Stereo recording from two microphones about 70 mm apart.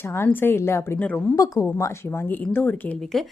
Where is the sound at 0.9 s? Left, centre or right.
Centre.